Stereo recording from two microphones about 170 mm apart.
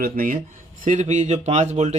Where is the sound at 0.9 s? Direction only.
45° right (ahead or behind).